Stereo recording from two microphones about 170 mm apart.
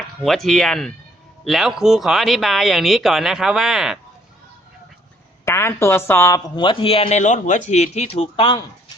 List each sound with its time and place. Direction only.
0.2 s speech: centre (ahead or behind)
5.5 s speech: 15° left (ahead or behind)